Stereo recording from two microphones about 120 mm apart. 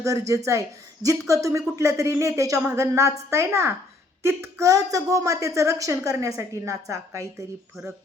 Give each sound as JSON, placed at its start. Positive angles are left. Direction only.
{"t": 0.0, "sound": "a woman's voice", "side_deg": -25}